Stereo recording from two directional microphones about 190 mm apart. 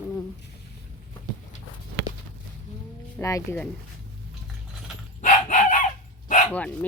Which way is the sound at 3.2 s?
15° left (ahead or behind).